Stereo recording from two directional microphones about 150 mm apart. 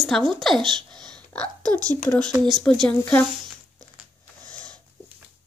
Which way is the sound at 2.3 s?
30° right (ahead or behind).